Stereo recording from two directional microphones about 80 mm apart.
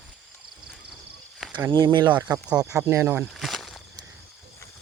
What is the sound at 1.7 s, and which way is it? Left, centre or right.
Speech, right.